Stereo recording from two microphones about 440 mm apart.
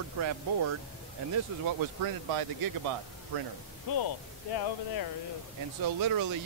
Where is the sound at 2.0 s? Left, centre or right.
Right.